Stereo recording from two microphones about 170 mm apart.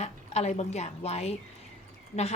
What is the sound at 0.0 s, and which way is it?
A woman's voice, 40° left (ahead or behind).